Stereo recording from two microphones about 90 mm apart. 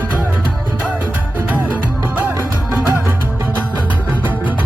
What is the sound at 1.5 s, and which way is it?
Music, 20° right (ahead or behind).